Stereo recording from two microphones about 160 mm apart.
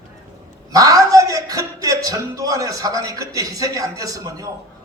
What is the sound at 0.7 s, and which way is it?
A man's voice, 20° right (ahead or behind).